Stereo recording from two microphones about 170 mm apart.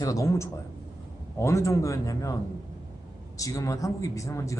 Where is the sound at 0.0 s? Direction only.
20° left (ahead or behind).